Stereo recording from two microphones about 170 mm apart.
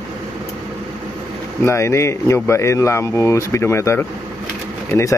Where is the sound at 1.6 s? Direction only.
15° left (ahead or behind).